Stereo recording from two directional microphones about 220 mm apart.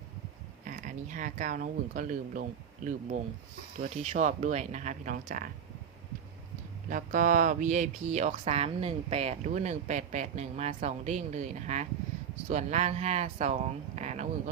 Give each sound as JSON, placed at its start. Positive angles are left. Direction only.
{"t": 0.6, "sound": "speech", "side_deg": -35}
{"t": 6.9, "sound": "speech", "side_deg": -35}